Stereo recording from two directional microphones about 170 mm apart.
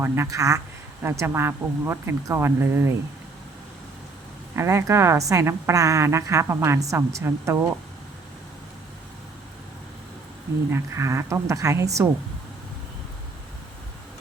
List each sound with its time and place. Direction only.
0.0 s a woman's voice: 15° right (ahead or behind)
4.5 s a woman's voice: 15° right (ahead or behind)
10.7 s a woman's voice: 15° right (ahead or behind)